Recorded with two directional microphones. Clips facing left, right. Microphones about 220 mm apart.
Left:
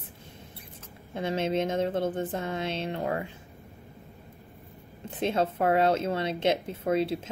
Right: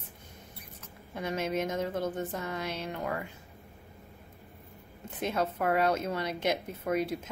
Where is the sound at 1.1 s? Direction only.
25° left (ahead or behind).